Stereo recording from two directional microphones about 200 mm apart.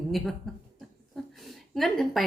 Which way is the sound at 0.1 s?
Centre (ahead or behind).